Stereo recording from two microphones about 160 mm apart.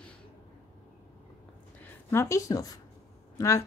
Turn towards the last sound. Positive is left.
turn(degrees=20)  # may be behind; listen again after turning